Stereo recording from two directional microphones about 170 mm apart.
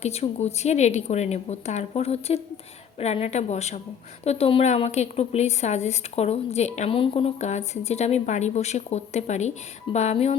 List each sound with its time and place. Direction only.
0.0 s a woman's voice: 40° left (ahead or behind)